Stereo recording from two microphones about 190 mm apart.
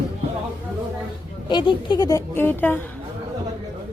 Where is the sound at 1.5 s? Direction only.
25° left (ahead or behind).